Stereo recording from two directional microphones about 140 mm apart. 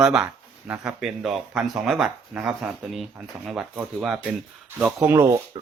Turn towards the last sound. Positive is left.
turn(degrees=-20)  # may be behind; listen again after turning